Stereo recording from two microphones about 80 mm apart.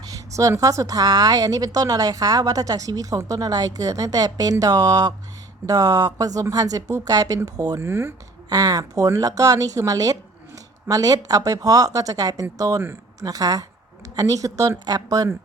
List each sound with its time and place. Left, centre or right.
0.1 s a woman's voice: right
7.8 s speech: right
8.4 s a woman's voice: right